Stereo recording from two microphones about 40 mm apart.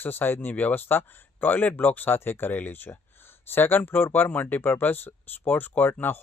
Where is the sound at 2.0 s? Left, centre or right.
Left.